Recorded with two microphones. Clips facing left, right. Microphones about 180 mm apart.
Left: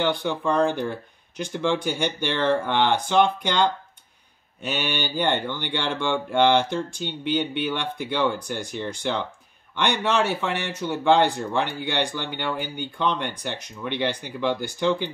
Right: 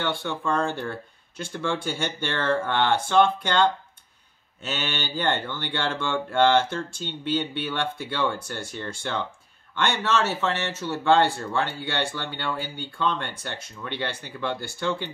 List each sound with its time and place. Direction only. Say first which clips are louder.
0.0 s speech: left 4 dB; 15° left (ahead or behind)